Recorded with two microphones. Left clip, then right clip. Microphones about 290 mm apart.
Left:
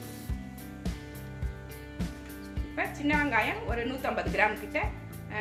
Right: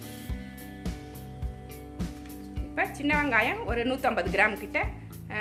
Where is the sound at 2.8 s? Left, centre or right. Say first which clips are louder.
Right 3 dB; right.